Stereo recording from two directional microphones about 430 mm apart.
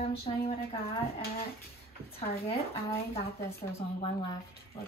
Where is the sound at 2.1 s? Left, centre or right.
Centre.